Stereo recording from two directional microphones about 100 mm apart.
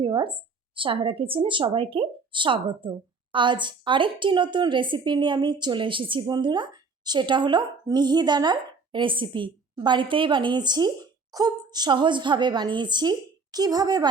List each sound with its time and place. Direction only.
0.0 s a woman's voice: 55° right (ahead or behind)